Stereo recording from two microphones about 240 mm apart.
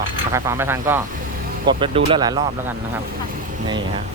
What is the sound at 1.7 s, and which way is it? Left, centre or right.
Speech, right.